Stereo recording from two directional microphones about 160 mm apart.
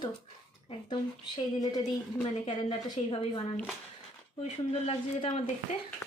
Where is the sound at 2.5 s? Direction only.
30° left (ahead or behind).